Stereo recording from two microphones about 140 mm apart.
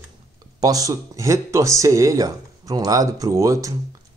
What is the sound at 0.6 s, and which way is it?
Speech, 25° right (ahead or behind).